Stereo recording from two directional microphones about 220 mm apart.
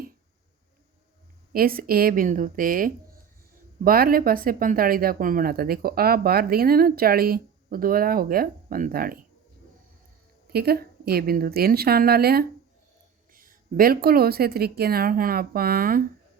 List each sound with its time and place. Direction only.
1.5 s speech: 40° right (ahead or behind)
10.5 s a woman's voice: 45° right (ahead or behind)